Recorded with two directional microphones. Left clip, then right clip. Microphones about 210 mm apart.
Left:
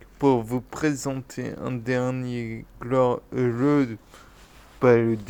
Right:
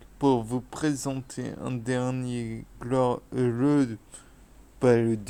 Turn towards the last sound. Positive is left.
turn(degrees=-5)  # may be behind; listen again after turning